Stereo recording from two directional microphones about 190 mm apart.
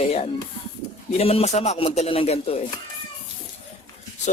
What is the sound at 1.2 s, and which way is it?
A man's voice, 30° left (ahead or behind).